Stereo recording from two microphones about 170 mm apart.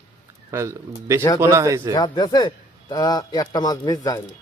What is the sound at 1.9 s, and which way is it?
Speech, 25° left (ahead or behind).